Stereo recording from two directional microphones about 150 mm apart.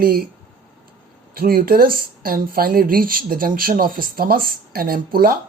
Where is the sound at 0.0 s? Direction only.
90° right.